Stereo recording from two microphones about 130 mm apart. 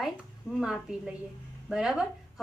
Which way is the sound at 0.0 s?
5° right (ahead or behind).